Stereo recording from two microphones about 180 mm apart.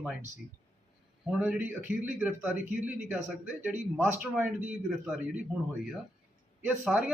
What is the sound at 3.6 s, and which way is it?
Speech, 10° right (ahead or behind).